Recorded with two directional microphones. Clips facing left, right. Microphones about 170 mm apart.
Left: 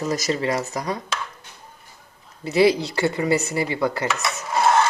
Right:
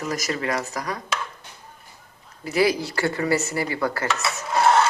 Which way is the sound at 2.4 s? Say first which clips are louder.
Left 4 dB; 25° left (ahead or behind).